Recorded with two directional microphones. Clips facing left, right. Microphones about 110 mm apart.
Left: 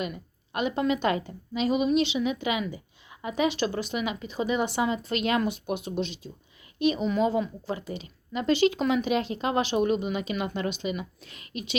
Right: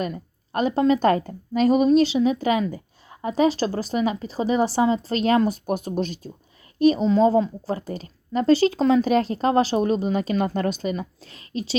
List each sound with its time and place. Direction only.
0.0 s a woman's voice: 40° right (ahead or behind)